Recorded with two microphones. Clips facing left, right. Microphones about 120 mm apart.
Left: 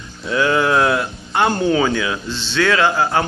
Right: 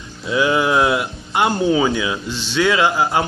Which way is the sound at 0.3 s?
15° right (ahead or behind).